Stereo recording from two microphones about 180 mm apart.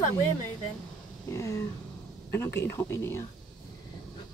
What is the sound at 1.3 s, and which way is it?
Speech, 15° left (ahead or behind).